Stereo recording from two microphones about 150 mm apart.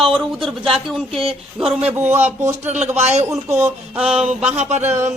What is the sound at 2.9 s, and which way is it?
Speech, 45° right (ahead or behind).